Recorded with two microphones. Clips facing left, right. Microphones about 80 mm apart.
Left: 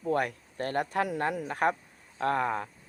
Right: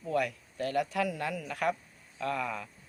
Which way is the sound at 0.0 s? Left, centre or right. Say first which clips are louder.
Left 2 dB; left.